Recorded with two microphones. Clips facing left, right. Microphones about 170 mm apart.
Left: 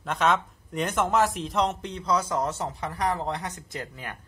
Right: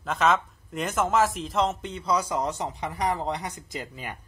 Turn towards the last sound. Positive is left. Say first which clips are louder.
# right 1 dB
turn(degrees=-15)  # may be behind; listen again after turning